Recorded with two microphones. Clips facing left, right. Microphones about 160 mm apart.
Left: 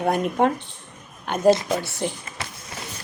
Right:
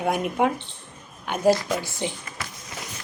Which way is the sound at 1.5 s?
20° left (ahead or behind).